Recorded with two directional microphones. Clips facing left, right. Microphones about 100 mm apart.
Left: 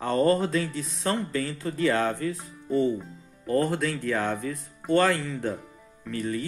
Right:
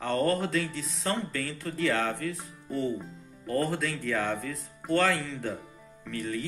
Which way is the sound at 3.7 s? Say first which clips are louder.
Left 3 dB; 15° left (ahead or behind).